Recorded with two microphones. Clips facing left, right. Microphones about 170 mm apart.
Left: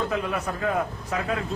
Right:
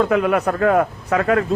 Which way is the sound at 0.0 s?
70° right (ahead or behind).